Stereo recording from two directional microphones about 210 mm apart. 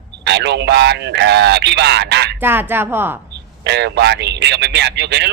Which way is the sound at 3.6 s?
55° right (ahead or behind).